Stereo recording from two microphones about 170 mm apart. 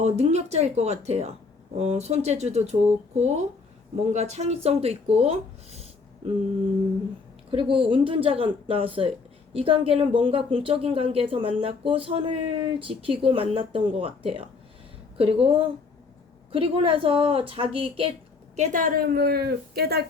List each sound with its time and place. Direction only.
0.0 s speech: 40° right (ahead or behind)
7.5 s speech: 30° right (ahead or behind)
18.5 s a woman's voice: 45° right (ahead or behind); by 20.0 s 65° right (ahead or behind)